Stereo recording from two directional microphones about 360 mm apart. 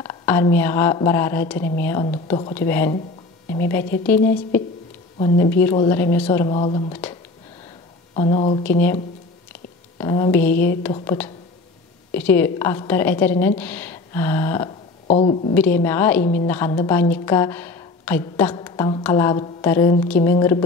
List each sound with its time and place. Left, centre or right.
0.0 s a woman's voice: centre
5.4 s a woman's voice: centre
9.5 s a sound: centre
10.8 s a woman's voice: centre
15.0 s a woman's voice: centre
15.5 s a woman's voice: centre